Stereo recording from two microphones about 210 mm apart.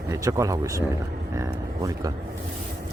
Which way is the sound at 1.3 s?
15° right (ahead or behind).